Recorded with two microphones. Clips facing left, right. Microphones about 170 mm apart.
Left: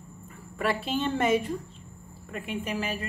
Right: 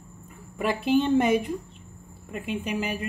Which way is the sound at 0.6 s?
15° right (ahead or behind).